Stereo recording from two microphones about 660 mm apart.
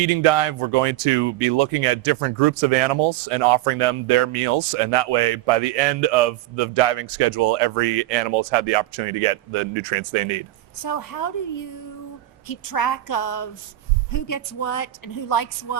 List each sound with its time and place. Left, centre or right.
0.0 s speech: right
10.8 s speech: left